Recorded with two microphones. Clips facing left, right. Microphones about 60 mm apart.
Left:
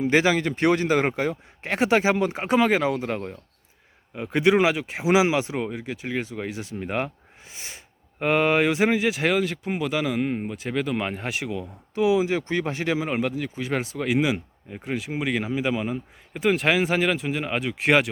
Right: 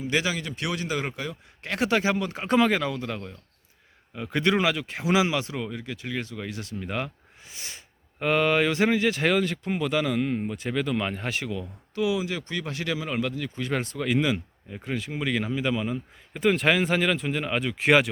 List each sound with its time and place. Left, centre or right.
0.0 s a man's voice: left
2.5 s speech: centre; by 3.3 s left
4.3 s speech: centre
8.2 s speech: left
10.5 s speech: centre
11.5 s speech: left
13.3 s speech: centre
16.3 s speech: centre